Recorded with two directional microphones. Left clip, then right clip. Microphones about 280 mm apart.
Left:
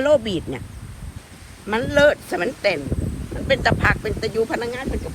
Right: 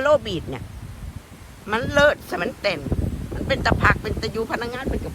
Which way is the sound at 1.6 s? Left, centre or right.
Centre.